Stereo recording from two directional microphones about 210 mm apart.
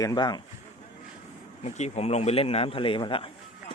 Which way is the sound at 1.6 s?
35° left (ahead or behind).